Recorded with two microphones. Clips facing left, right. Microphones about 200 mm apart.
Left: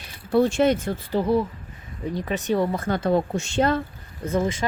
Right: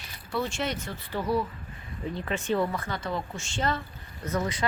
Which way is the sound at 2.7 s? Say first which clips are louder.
Left 10 dB; 45° left (ahead or behind).